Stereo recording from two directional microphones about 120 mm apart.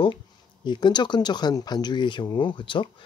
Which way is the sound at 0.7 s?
40° left (ahead or behind).